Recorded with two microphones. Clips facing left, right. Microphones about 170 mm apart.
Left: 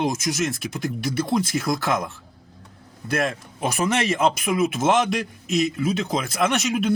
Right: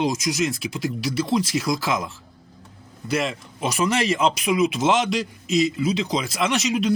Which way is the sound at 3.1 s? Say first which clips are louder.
Even; 55° left (ahead or behind).